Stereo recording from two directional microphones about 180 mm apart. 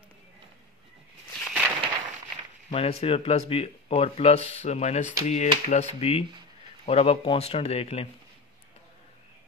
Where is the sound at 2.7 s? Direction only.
35° left (ahead or behind).